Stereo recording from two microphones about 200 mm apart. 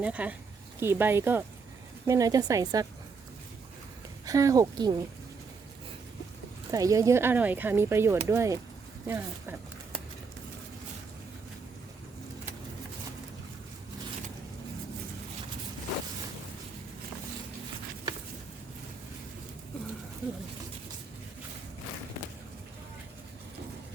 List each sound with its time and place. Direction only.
0.0 s speech: 5° right (ahead or behind)
4.3 s speech: 15° right (ahead or behind)
6.7 s speech: 15° right (ahead or behind)